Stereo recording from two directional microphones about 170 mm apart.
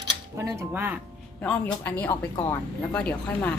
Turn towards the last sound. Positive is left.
turn(degrees=5)  # may be behind; listen again after turning